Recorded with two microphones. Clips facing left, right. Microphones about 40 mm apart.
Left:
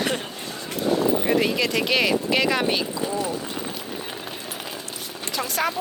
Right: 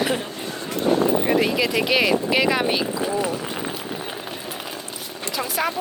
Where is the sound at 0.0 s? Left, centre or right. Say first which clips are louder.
Right 3 dB; centre.